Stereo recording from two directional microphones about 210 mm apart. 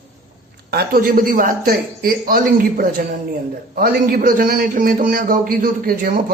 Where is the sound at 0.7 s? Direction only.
45° right (ahead or behind).